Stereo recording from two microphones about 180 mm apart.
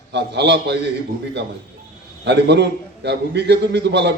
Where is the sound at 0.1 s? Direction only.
70° right (ahead or behind).